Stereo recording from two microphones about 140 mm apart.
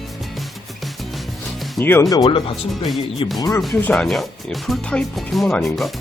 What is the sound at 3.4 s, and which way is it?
Speech, 25° left (ahead or behind).